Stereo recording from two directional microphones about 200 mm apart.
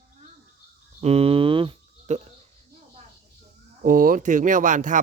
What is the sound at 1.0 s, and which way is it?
Cricket, 30° right (ahead or behind).